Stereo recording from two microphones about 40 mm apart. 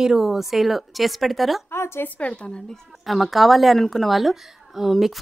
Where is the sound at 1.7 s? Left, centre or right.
Left.